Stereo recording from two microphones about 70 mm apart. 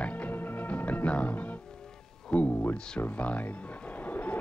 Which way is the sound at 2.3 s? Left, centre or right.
Centre.